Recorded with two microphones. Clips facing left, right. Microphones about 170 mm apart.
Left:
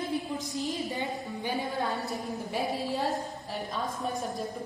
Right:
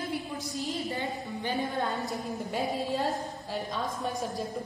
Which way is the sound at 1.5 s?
Centre (ahead or behind).